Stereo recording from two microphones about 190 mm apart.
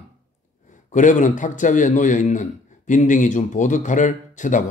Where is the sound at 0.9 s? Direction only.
40° left (ahead or behind).